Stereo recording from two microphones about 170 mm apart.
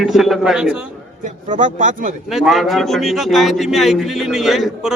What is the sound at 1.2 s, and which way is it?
Speech, 50° right (ahead or behind).